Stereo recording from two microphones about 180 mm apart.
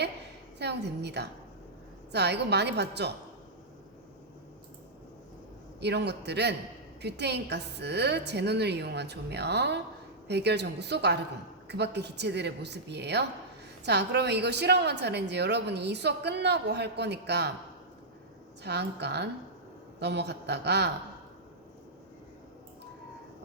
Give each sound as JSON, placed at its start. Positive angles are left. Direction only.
{"t": 0.6, "sound": "a woman's voice", "side_deg": -70}
{"t": 5.8, "sound": "a woman's voice", "side_deg": -70}
{"t": 18.6, "sound": "a woman's voice", "side_deg": -70}